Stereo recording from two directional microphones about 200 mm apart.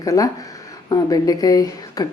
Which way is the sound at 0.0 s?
15° left (ahead or behind).